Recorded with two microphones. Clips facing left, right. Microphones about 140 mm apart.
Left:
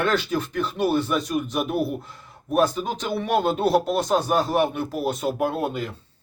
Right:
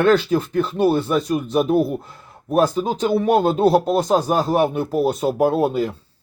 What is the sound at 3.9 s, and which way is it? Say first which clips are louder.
Speech: right 4 dB; 30° right (ahead or behind).